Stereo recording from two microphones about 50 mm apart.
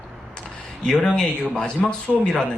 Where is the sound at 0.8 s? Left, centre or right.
Centre.